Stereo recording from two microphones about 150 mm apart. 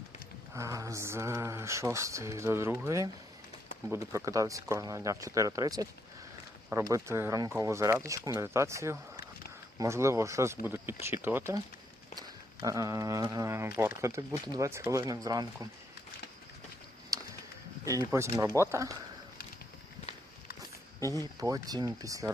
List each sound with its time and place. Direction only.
0.5 s speech: 20° right (ahead or behind)
17.1 s a sound: 25° right (ahead or behind)
17.8 s speech: 20° right (ahead or behind)
21.3 s speech: 25° right (ahead or behind)